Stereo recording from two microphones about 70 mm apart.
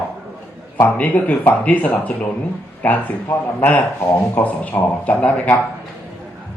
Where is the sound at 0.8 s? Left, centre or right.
Left.